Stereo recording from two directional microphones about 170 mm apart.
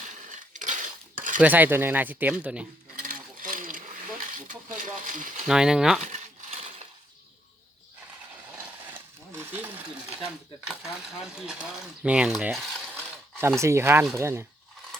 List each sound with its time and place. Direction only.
0.0 s a sound: 45° right (ahead or behind)
1.4 s speech: 10° right (ahead or behind)
3.0 s a sound: 55° right (ahead or behind)
5.5 s speech: 5° right (ahead or behind)
6.1 s coin: 40° right (ahead or behind)
8.6 s sewing machine: 15° right (ahead or behind)
11.0 s speech: 5° right (ahead or behind)
12.7 s mechanisms: centre (ahead or behind)
13.6 s speech: 15° right (ahead or behind)